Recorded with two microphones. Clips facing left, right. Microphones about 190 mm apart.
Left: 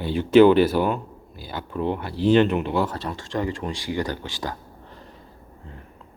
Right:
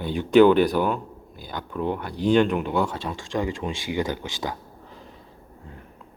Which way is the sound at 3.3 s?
15° right (ahead or behind).